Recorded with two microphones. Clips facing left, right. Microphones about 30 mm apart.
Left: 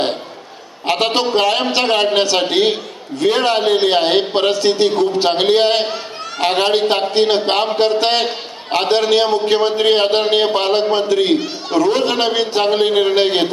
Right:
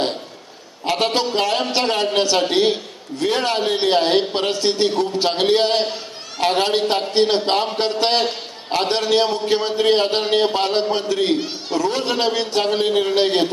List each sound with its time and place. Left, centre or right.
0.8 s a man's voice: left